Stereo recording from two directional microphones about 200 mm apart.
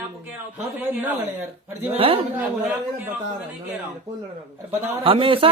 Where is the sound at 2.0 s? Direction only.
25° right (ahead or behind).